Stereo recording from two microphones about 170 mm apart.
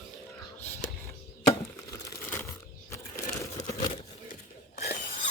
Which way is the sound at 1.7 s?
20° left (ahead or behind).